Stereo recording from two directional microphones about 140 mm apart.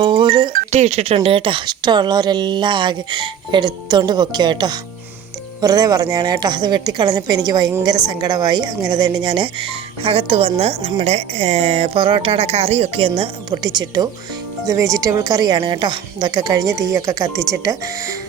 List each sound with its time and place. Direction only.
0.0 s doorbell: 35° right (ahead or behind)
0.7 s a woman's voice: 50° right (ahead or behind); by 17.7 s 25° right (ahead or behind)